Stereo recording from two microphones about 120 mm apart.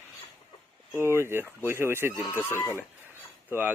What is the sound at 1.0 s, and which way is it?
Speech, 20° right (ahead or behind).